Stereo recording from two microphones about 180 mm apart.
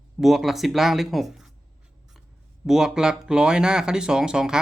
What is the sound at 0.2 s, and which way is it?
Speech, centre (ahead or behind).